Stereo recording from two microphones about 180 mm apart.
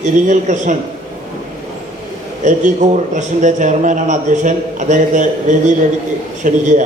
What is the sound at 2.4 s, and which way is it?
A man's voice, 45° right (ahead or behind).